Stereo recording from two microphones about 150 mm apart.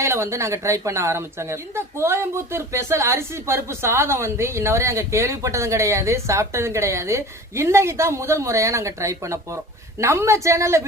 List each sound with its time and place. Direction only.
0.0 s speech: 20° right (ahead or behind)